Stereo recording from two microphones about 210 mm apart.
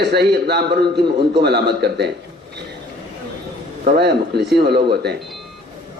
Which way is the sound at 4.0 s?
50° right (ahead or behind).